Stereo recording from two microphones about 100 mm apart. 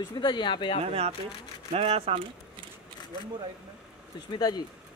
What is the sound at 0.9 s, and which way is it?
Speech, 90° right.